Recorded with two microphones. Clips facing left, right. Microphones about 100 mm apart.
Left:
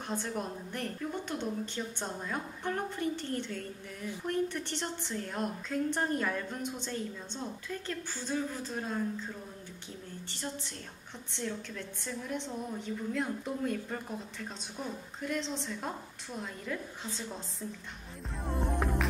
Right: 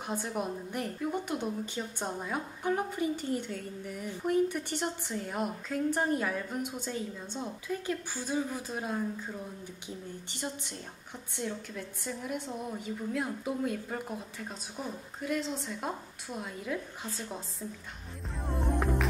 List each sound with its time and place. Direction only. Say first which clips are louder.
0.1 s a woman's voice: right 2 dB; 10° right (ahead or behind)
10.3 s a woman's voice: right 1 dB; 15° right (ahead or behind)
18.4 s music: right 1 dB; centre (ahead or behind)